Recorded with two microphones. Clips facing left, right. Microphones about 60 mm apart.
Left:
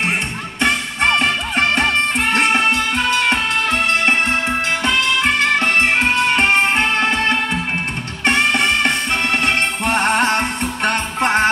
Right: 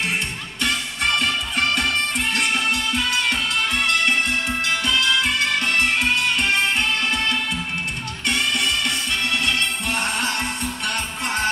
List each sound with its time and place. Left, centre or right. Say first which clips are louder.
0.6 s music: left 6 dB; left